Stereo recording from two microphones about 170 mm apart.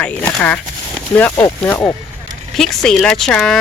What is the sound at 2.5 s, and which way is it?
Speech, centre (ahead or behind).